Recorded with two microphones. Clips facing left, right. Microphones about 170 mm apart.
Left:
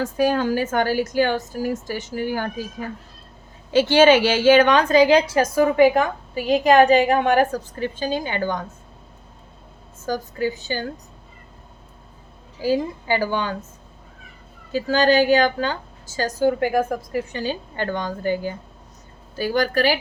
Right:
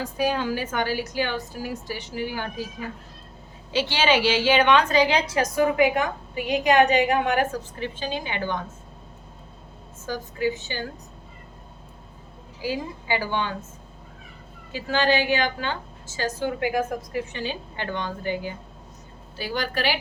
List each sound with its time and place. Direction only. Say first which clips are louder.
0.0 s a woman's voice: left 5 dB; 45° left (ahead or behind)
3.7 s a woman's voice: left 9 dB; 50° left (ahead or behind)
10.1 s a woman's voice: left 2 dB; 40° left (ahead or behind)
12.6 s a woman's voice: left 7 dB; 45° left (ahead or behind)
14.7 s a woman's voice: left 5 dB; 40° left (ahead or behind)